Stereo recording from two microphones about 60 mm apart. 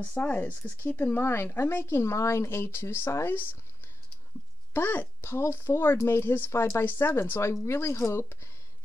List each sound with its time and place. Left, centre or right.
0.0 s speech: left
4.7 s speech: left
7.5 s speech: left